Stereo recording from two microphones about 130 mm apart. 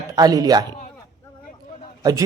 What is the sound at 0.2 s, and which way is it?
Speech, 30° right (ahead or behind).